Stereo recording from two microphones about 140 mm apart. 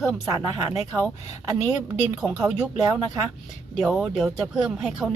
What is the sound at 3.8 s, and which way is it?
A woman's voice, 5° right (ahead or behind).